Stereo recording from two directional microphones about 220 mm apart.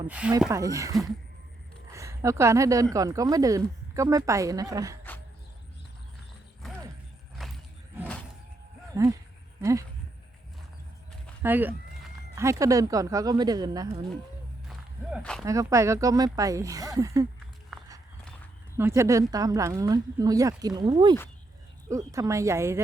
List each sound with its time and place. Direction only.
0.1 s speech: 5° right (ahead or behind)
6.6 s mechanisms: centre (ahead or behind)
7.4 s roaring cats: centre (ahead or behind)
8.9 s speech: 15° right (ahead or behind)
11.4 s speech: 10° right (ahead or behind)
14.7 s walk: centre (ahead or behind)
15.4 s speech: 15° right (ahead or behind)
17.7 s walk: centre (ahead or behind)
18.8 s speech: 10° right (ahead or behind)